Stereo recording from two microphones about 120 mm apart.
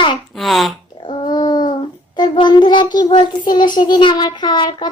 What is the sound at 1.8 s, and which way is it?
Child singing, 40° left (ahead or behind).